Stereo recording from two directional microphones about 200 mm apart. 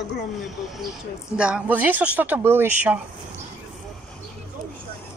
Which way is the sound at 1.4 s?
5° right (ahead or behind).